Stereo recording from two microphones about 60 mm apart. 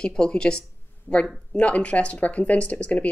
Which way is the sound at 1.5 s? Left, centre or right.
Left.